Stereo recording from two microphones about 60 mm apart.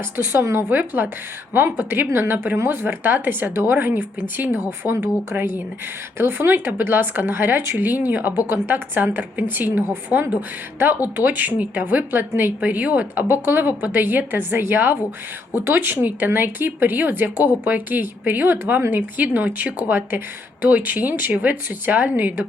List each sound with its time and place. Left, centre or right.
0.2 s a woman's voice: right